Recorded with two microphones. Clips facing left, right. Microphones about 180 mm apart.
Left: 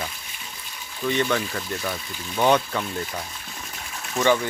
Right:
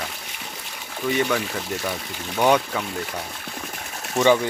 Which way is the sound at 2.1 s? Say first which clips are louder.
Right 3 dB; 70° right (ahead or behind).